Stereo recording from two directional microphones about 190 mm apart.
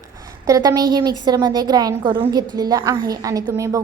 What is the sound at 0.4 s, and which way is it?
A woman's voice, 20° right (ahead or behind).